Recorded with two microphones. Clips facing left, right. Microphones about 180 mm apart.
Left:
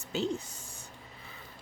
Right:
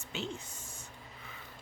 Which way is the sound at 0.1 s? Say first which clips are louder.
Left 8 dB; 35° left (ahead or behind).